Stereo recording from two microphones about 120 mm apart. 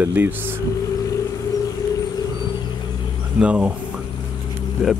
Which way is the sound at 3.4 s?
10° right (ahead or behind).